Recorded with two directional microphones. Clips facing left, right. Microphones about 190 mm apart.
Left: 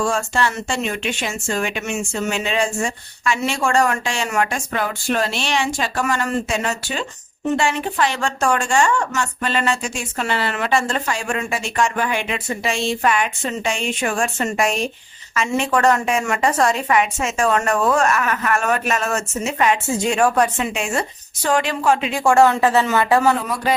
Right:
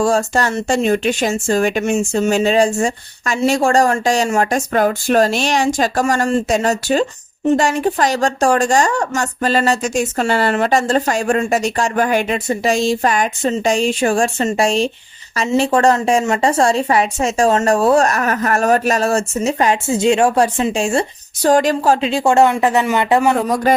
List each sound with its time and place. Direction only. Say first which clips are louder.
0.0 s speech: right 5 dB; 35° right (ahead or behind); by 23.3 s 20° right (ahead or behind)